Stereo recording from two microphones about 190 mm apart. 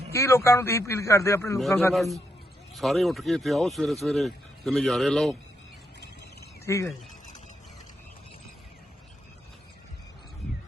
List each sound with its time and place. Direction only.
0.1 s a man's voice: 15° left (ahead or behind)
1.9 s speech: centre (ahead or behind)
6.7 s a man's voice: 15° left (ahead or behind)